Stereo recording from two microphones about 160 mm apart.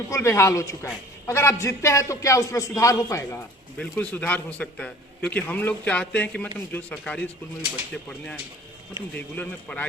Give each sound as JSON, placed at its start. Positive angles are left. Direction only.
{"t": 0.1, "sound": "a man's voice", "side_deg": 15}
{"t": 3.8, "sound": "a man's voice", "side_deg": 10}
{"t": 9.1, "sound": "a man's voice", "side_deg": 10}